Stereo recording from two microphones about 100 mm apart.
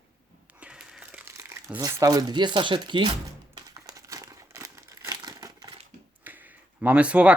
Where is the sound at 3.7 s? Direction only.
35° right (ahead or behind).